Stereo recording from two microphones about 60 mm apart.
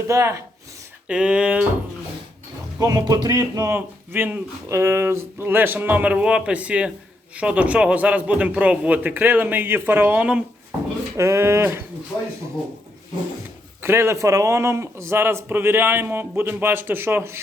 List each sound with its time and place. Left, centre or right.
0.1 s speech: right
1.0 s a man's voice: centre
2.7 s speech: right
3.7 s a man's voice: right
4.7 s a man's voice: right
9.0 s a man's voice: right
11.2 s speech: right
12.1 s speech: centre
13.8 s a man's voice: right